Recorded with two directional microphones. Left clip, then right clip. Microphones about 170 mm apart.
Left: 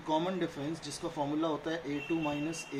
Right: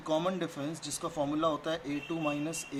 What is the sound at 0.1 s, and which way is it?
Speech, 50° right (ahead or behind).